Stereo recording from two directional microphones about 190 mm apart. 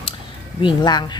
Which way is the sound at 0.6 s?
25° left (ahead or behind).